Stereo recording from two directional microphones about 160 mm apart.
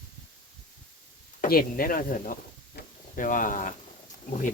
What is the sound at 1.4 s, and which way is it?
Speech, 65° left (ahead or behind).